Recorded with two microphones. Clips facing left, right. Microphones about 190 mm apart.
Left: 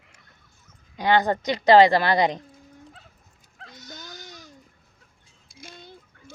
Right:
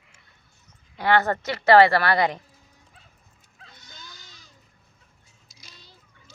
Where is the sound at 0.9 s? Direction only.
15° left (ahead or behind).